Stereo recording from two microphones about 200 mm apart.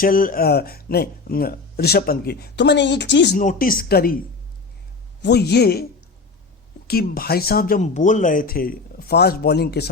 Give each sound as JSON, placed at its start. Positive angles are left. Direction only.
{"t": 0.0, "sound": "speech", "side_deg": 45}
{"t": 3.3, "sound": "speech", "side_deg": 45}
{"t": 5.2, "sound": "speech", "side_deg": 55}
{"t": 6.8, "sound": "speech", "side_deg": 50}